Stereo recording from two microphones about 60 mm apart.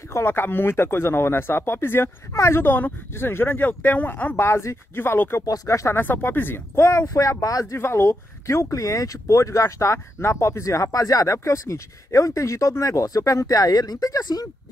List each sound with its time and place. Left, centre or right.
0.1 s speech: left
2.3 s speech: left
2.6 s speech: left
4.4 s speech: left
5.4 s speech: left
5.9 s speech: left
6.8 s speech: left
7.7 s speech: left
11.3 s speech: left